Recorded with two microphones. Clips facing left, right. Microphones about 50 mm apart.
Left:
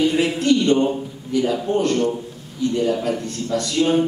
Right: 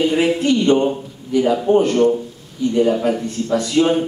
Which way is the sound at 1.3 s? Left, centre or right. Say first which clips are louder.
Right 5 dB; centre.